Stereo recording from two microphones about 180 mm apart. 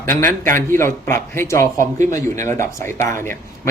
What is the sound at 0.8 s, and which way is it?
A man's voice, 15° left (ahead or behind).